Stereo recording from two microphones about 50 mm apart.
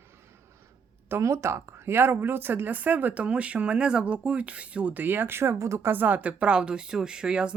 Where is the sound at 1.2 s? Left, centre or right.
Right.